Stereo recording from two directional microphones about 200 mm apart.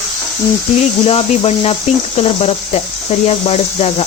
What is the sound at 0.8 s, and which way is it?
Speech, 30° left (ahead or behind).